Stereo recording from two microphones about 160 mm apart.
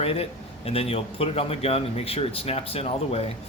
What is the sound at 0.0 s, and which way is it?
Speech, 40° left (ahead or behind).